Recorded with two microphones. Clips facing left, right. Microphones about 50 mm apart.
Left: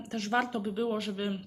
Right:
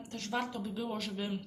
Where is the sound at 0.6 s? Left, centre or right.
Centre.